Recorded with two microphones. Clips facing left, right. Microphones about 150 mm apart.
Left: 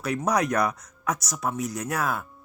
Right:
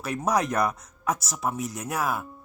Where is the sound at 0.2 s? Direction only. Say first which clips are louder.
Even; 25° right (ahead or behind).